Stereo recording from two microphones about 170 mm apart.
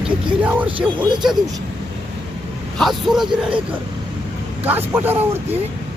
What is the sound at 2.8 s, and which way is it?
Speech, centre (ahead or behind).